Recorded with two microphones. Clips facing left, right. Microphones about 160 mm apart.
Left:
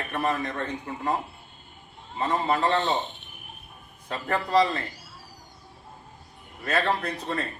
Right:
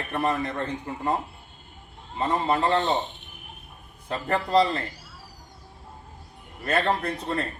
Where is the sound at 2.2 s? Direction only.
25° right (ahead or behind).